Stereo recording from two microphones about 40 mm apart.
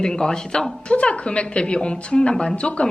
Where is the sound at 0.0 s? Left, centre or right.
Centre.